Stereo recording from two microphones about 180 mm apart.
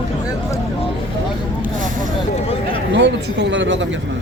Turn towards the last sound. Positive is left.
turn(degrees=-85)